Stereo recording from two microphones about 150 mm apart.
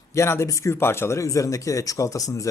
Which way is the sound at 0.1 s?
20° left (ahead or behind).